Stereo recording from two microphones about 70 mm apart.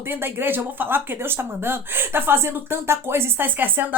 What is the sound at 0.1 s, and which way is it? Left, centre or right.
Speech, right.